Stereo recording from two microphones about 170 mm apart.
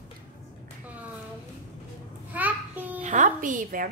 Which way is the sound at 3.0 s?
45° right (ahead or behind).